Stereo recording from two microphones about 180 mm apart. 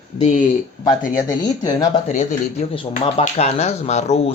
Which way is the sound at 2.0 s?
40° left (ahead or behind).